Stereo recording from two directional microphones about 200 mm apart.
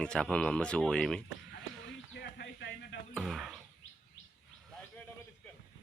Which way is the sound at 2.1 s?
55° left (ahead or behind).